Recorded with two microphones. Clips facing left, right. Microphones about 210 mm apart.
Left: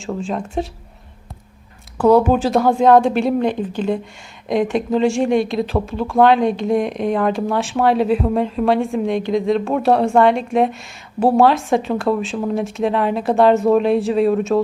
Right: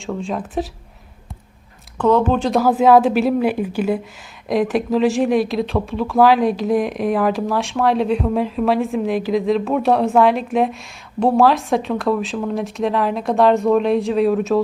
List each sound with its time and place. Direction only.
0.0 s speech: centre (ahead or behind)
2.0 s speech: 10° left (ahead or behind)